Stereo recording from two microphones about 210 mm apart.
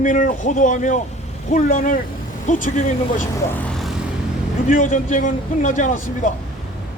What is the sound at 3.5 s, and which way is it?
Vehicle, centre (ahead or behind).